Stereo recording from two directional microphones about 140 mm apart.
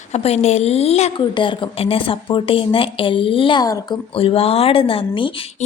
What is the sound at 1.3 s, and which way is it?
A woman's voice, 35° left (ahead or behind).